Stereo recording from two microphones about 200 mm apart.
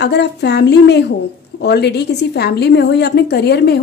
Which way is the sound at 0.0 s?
60° left (ahead or behind).